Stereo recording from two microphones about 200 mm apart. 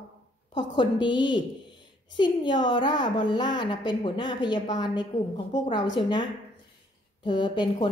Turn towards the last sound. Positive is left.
turn(degrees=20)  # may be behind; listen again after turning